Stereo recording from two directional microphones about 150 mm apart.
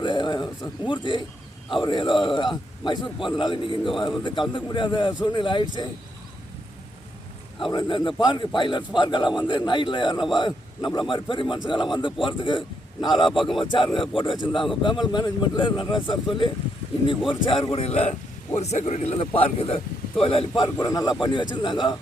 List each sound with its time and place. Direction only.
0.0 s a man's voice: 30° left (ahead or behind)
7.6 s a man's voice: 30° left (ahead or behind)
13.3 s speech: centre (ahead or behind)
13.7 s a man's voice: 35° left (ahead or behind)
20.7 s a man's voice: 20° left (ahead or behind)